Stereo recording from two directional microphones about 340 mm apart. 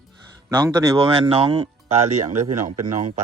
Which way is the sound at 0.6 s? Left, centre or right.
Centre.